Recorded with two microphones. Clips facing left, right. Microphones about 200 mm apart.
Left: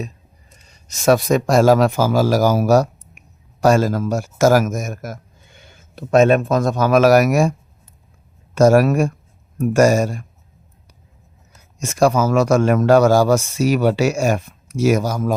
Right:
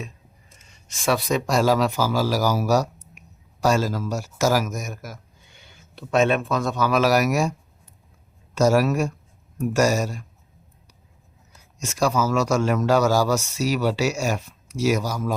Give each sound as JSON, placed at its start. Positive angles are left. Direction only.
{"t": 0.6, "sound": "speech", "side_deg": 40}
{"t": 8.5, "sound": "speech", "side_deg": 55}
{"t": 11.8, "sound": "speech", "side_deg": 55}